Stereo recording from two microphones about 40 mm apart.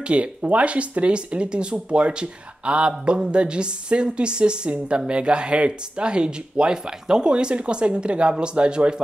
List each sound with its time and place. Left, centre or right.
0.0 s speech: right